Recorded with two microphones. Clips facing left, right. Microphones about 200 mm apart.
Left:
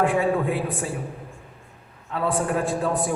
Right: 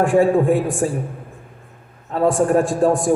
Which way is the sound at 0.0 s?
45° right (ahead or behind).